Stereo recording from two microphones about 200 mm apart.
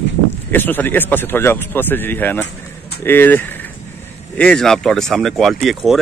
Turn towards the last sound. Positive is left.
turn(degrees=0)  # may be behind; listen again after turning